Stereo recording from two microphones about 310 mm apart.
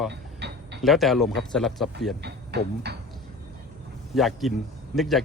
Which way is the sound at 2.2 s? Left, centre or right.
Right.